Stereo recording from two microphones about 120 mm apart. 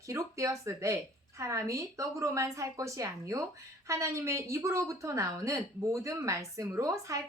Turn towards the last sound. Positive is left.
turn(degrees=-25)  # may be behind; listen again after turning